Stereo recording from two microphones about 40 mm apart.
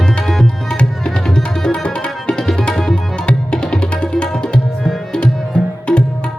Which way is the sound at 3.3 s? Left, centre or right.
Left.